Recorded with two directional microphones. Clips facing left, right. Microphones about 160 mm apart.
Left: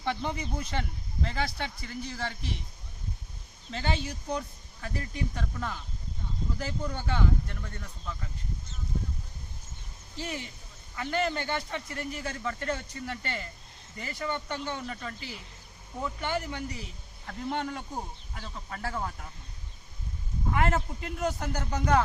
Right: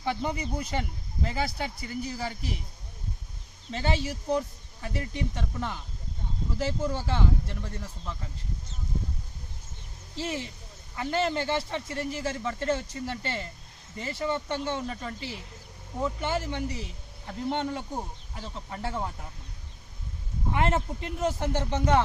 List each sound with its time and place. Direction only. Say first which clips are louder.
0.0 s speech: right 2 dB; 5° right (ahead or behind)
3.7 s speech: right 3 dB; 25° right (ahead or behind)
10.2 s speech: right 4 dB; 30° right (ahead or behind)
20.5 s speech: right 1 dB; 25° right (ahead or behind)